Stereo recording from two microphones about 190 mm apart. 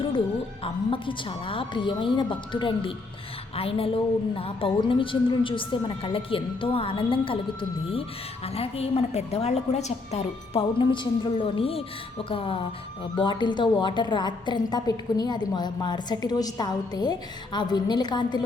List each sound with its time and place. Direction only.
0.6 s a woman's voice: 25° left (ahead or behind)